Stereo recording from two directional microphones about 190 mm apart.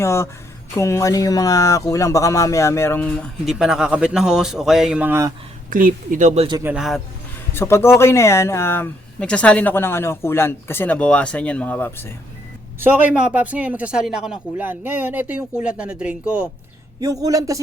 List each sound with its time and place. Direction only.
0.0 s speech: 15° left (ahead or behind)
3.4 s speech: 5° right (ahead or behind)
5.7 s speech: 45° right (ahead or behind)
6.6 s speech: 5° right (ahead or behind)
7.5 s speech: 15° left (ahead or behind)
12.8 s speech: 10° right (ahead or behind)
17.0 s speech: 20° right (ahead or behind)